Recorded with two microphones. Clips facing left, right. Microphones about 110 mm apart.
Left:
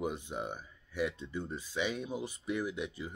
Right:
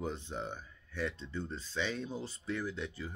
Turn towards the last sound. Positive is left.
turn(degrees=15)  # may be behind; listen again after turning